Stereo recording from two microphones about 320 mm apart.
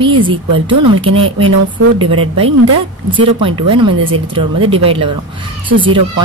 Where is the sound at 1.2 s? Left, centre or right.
Centre.